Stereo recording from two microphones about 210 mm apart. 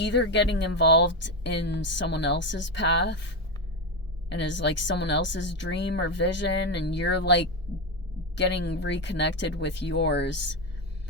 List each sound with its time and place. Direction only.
0.0 s speech: 55° left (ahead or behind)
4.3 s speech: 55° left (ahead or behind)